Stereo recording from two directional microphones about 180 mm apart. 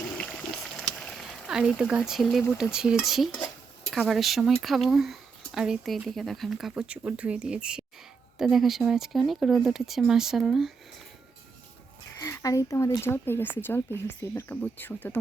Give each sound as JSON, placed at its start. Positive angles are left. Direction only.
{"t": 0.2, "sound": "a sound", "side_deg": 5}
{"t": 2.7, "sound": "speech", "side_deg": 0}
{"t": 12.2, "sound": "speech", "side_deg": 20}